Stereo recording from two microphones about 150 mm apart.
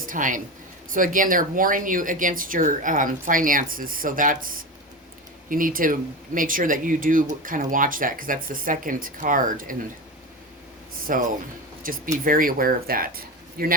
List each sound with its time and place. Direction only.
0.0 s speech: 60° right (ahead or behind)
11.1 s speech: 65° right (ahead or behind)